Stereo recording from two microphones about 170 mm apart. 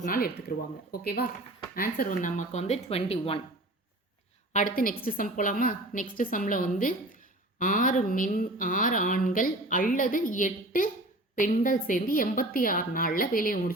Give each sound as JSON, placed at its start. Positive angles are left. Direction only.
{"t": 0.0, "sound": "a woman's voice", "side_deg": 60}
{"t": 4.5, "sound": "a woman's voice", "side_deg": 55}